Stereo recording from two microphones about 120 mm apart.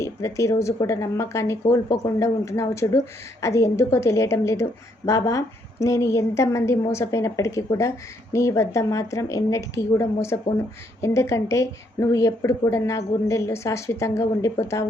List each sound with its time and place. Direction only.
0.0 s a woman's voice: 25° left (ahead or behind)